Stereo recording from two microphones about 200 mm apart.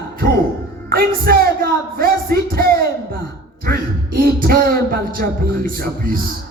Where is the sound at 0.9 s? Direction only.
50° right (ahead or behind).